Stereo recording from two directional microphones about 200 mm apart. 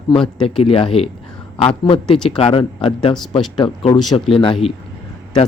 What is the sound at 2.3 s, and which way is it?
Speech, 25° left (ahead or behind).